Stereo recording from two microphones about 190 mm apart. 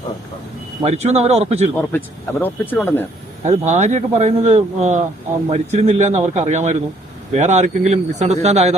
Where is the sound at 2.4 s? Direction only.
10° left (ahead or behind).